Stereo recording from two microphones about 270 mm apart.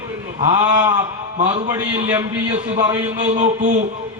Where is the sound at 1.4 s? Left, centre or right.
Right.